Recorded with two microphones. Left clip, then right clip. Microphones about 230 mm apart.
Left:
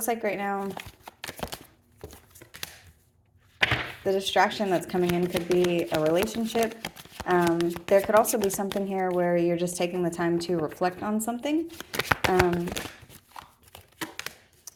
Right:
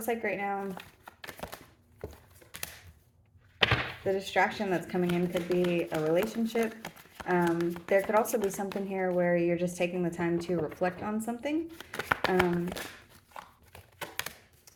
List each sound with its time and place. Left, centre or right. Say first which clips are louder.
0.0 s crumpling: left 4 dB; left
3.6 s speech: left 2 dB; left
6.6 s shuffling cards: left 6 dB; left
7.6 s speech: left 5 dB; left
11.9 s shuffling cards: left 4 dB; left